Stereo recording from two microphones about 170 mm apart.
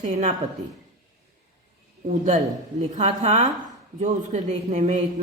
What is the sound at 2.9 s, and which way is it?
Speech, 40° right (ahead or behind).